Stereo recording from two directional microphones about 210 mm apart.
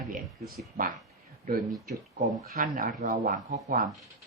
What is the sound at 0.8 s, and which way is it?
Ratchet, 45° right (ahead or behind).